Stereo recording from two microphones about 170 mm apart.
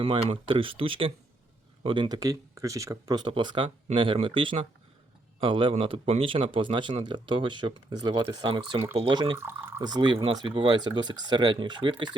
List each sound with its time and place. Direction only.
0.0 s speech: 30° right (ahead or behind)
9.4 s speech: 15° right (ahead or behind)
9.8 s speech: 25° right (ahead or behind)